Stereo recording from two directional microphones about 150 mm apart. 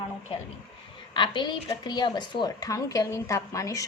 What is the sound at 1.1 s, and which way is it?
A woman's voice, 30° left (ahead or behind).